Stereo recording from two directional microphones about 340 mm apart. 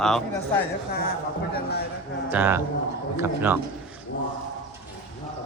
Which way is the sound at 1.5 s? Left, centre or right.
Left.